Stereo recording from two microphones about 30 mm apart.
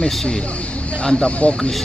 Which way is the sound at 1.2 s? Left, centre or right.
Left.